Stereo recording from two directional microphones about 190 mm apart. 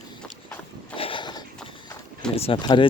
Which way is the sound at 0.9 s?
25° left (ahead or behind).